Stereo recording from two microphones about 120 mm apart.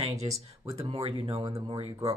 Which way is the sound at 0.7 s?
55° right (ahead or behind).